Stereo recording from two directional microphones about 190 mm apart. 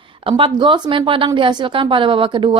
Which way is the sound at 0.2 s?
25° right (ahead or behind).